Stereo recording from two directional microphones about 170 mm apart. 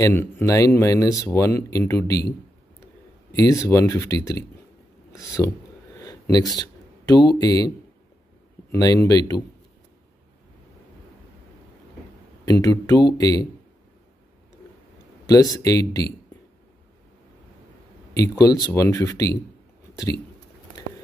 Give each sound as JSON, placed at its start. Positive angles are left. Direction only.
{"t": 0.0, "sound": "speech", "side_deg": 15}
{"t": 3.3, "sound": "speech", "side_deg": 20}
{"t": 8.7, "sound": "speech", "side_deg": 20}
{"t": 12.4, "sound": "speech", "side_deg": 20}
{"t": 15.2, "sound": "speech", "side_deg": 20}
{"t": 18.4, "sound": "speech", "side_deg": 20}